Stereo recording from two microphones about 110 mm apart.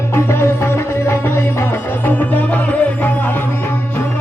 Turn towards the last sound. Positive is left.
turn(degrees=15)  # may be behind; listen again after turning